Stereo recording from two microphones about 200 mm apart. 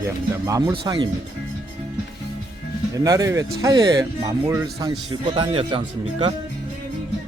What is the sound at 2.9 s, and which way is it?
Speech, 15° right (ahead or behind).